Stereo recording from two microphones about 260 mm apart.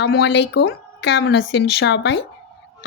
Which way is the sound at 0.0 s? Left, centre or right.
Left.